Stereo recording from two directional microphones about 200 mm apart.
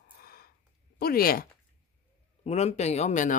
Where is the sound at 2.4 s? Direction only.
35° left (ahead or behind).